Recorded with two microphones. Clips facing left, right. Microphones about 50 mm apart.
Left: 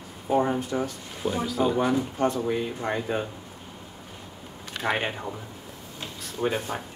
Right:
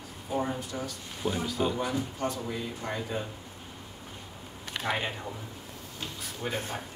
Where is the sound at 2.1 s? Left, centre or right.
Left.